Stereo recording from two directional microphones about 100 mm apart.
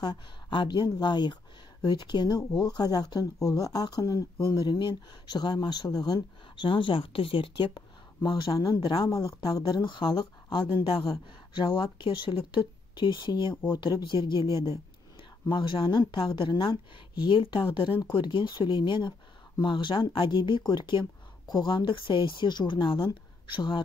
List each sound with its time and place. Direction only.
0.0 s speech: 50° left (ahead or behind)
4.6 s speech: 45° left (ahead or behind)
9.1 s speech: 35° left (ahead or behind)
9.7 s speech: 50° left (ahead or behind)
15.4 s speech: 55° left (ahead or behind)